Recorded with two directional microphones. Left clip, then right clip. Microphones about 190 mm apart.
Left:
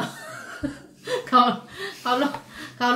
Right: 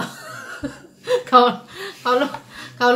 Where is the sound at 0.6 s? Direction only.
30° right (ahead or behind).